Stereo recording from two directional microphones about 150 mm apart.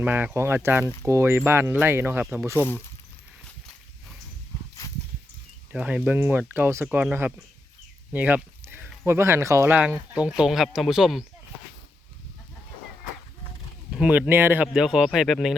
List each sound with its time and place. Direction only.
0.0 s speech: 10° right (ahead or behind)
5.7 s speech: 10° right (ahead or behind)
8.1 s a sound: 10° right (ahead or behind)
9.0 s speech: 15° right (ahead or behind)
13.9 s speech: 10° right (ahead or behind)